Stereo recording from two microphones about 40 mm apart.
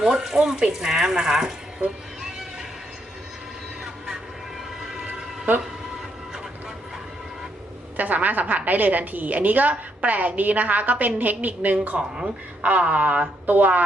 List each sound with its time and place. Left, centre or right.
0.0 s speech: centre
7.9 s a woman's voice: right